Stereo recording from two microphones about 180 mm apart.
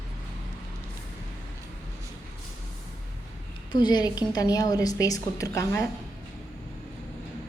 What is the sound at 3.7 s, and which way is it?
A woman's voice, 25° left (ahead or behind).